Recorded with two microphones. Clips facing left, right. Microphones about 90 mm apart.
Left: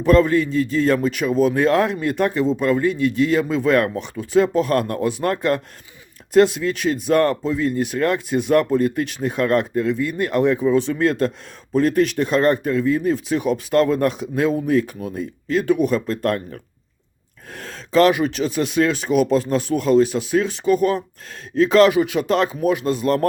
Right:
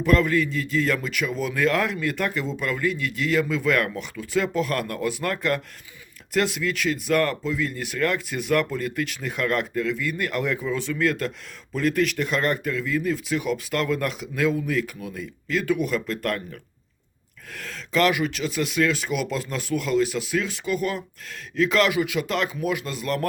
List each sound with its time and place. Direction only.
0.0 s a man's voice: 30° left (ahead or behind)